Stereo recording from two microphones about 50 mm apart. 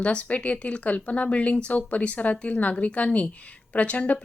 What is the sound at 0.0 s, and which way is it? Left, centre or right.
Speech, left.